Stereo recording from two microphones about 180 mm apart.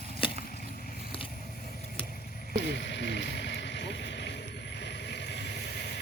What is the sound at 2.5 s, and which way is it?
Boat, 75° left (ahead or behind).